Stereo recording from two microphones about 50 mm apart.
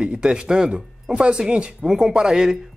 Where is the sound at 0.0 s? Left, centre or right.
Centre.